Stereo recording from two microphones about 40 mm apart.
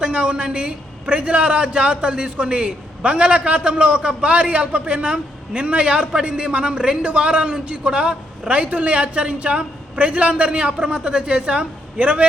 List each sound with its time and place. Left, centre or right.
0.0 s a man's voice: right